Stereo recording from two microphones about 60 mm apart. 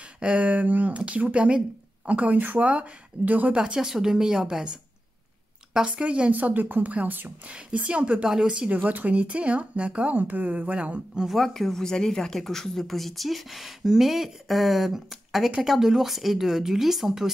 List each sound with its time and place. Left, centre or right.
0.0 s speech: centre
3.5 s speech: centre
5.9 s speech: centre
7.4 s speech: right
8.7 s speech: right
11.2 s a woman's voice: centre